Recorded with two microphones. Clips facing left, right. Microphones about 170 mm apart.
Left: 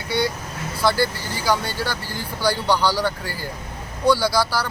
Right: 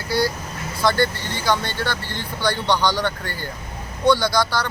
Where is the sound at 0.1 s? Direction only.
Centre (ahead or behind).